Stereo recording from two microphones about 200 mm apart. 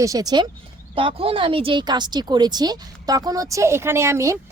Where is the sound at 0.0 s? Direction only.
15° right (ahead or behind).